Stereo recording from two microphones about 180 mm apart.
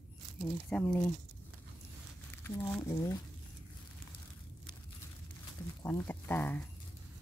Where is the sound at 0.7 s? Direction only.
10° left (ahead or behind).